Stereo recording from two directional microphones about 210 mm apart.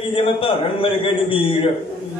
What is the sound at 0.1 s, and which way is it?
A man's voice, 25° left (ahead or behind).